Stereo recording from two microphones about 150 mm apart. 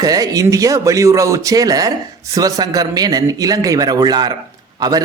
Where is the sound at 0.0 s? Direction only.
25° right (ahead or behind).